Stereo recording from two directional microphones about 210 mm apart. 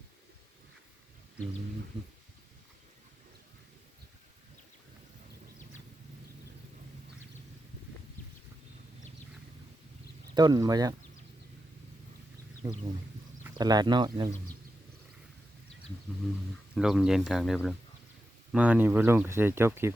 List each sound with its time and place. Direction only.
10.3 s speech: 20° right (ahead or behind)
12.6 s speech: 15° right (ahead or behind)
16.7 s speech: centre (ahead or behind)